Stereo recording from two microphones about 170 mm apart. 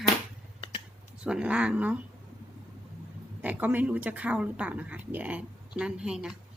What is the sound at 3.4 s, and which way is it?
Speech, 10° right (ahead or behind).